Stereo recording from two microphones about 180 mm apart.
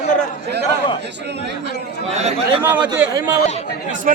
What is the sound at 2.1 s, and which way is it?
Speech, 35° right (ahead or behind).